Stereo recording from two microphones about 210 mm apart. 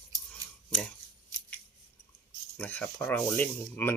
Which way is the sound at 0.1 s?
15° right (ahead or behind).